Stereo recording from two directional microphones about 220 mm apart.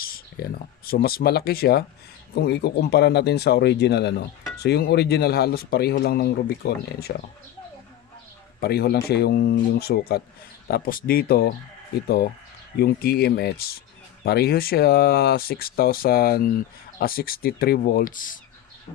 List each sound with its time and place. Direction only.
0.0 s speech: 40° left (ahead or behind)
8.6 s speech: 45° left (ahead or behind)